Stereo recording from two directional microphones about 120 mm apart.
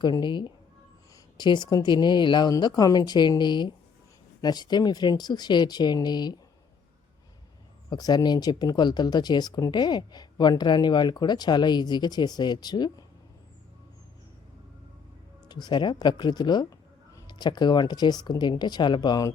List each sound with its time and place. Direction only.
0.0 s speech: 40° left (ahead or behind)
7.9 s speech: 35° left (ahead or behind)
15.4 s speech: 35° left (ahead or behind)